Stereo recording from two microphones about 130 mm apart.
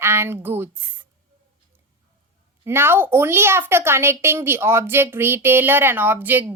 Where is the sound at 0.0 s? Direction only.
20° right (ahead or behind).